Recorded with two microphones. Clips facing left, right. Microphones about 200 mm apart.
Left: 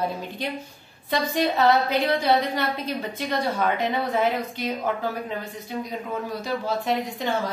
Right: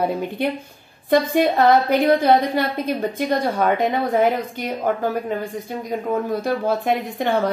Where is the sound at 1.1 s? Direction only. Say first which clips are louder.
Right 7 dB; 50° right (ahead or behind).